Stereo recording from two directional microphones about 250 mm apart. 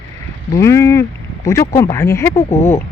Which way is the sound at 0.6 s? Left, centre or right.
Centre.